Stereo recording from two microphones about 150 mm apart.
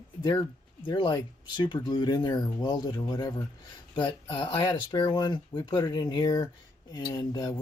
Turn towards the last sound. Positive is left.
turn(degrees=25)  # may be behind; listen again after turning